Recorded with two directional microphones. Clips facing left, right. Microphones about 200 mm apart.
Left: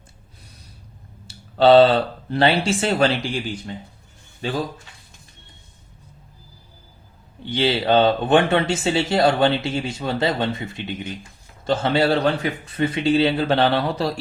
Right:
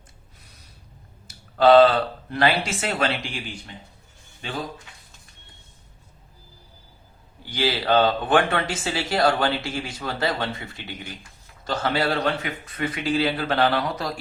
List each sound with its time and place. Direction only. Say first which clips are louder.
1.3 s speech: left 2 dB; 30° left (ahead or behind)
4.4 s speech: left 8 dB; 35° left (ahead or behind)
7.4 s speech: left 4 dB; 25° left (ahead or behind)